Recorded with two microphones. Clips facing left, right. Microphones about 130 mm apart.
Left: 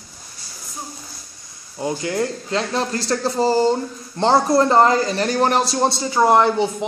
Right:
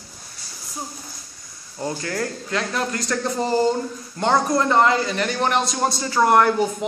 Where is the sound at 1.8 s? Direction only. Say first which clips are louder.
Left 4 dB; 15° left (ahead or behind).